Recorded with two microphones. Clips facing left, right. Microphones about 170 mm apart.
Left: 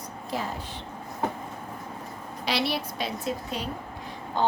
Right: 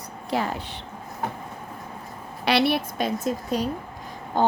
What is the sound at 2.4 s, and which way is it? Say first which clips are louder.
A woman's voice: right 7 dB; 60° right (ahead or behind).